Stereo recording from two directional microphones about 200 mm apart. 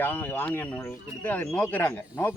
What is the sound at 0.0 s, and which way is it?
A man's voice, 10° left (ahead or behind).